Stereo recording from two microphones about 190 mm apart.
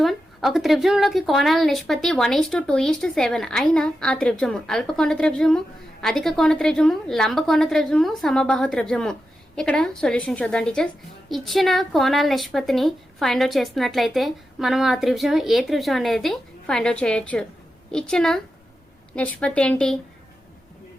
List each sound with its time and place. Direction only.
0.0 s a woman's voice: centre (ahead or behind)